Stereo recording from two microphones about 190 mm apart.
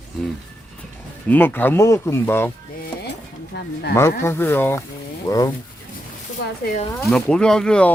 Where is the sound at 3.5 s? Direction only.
60° left (ahead or behind).